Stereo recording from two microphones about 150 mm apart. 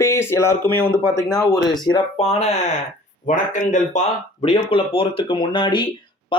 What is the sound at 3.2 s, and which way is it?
Speech, 60° left (ahead or behind).